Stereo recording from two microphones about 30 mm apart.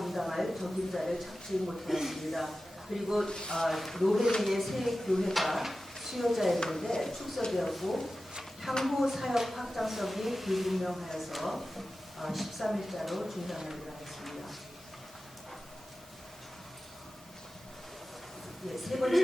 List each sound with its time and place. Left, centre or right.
0.0 s a sound: centre
0.6 s speech: centre
3.2 s speech: left
3.6 s speech: centre
6.7 s speech: centre
14.2 s a sound: centre
18.8 s speech: centre